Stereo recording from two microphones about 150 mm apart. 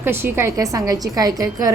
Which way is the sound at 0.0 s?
15° right (ahead or behind).